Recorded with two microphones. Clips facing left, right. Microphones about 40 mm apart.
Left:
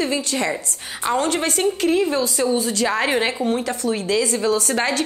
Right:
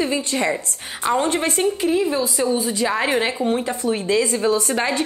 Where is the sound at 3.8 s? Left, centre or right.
Right.